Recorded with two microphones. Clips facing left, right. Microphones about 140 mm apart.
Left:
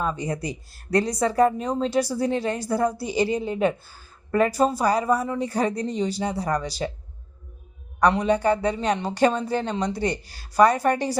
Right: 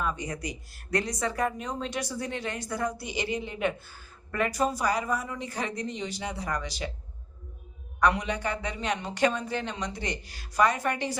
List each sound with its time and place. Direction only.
0.0 s speech: 30° left (ahead or behind)
8.0 s speech: 35° left (ahead or behind)